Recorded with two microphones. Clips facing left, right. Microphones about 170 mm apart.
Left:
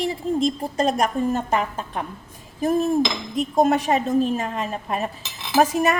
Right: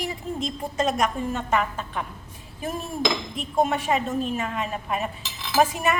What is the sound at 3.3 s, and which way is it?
A woman's voice, 40° left (ahead or behind).